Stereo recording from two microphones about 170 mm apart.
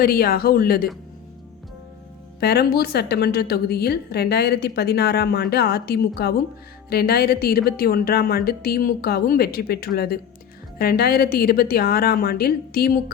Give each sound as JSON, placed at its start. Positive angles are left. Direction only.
{"t": 0.0, "sound": "a woman's voice", "side_deg": 65}
{"t": 2.4, "sound": "a woman's voice", "side_deg": 70}